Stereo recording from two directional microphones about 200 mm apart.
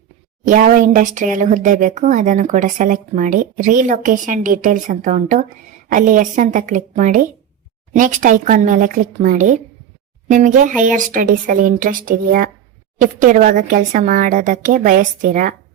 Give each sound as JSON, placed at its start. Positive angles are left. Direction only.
{"t": 0.4, "sound": "speech", "side_deg": -40}